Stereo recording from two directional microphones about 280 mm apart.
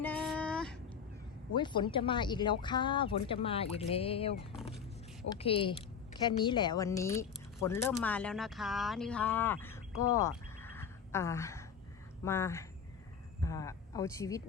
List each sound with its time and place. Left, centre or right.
0.0 s child singing: centre
1.5 s speech: centre